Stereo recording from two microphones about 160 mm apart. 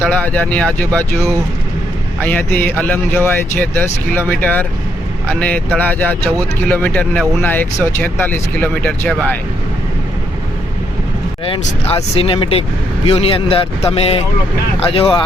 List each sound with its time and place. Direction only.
0.0 s speech: 10° left (ahead or behind)
2.2 s speech: 10° left (ahead or behind)
11.4 s speech: 35° left (ahead or behind)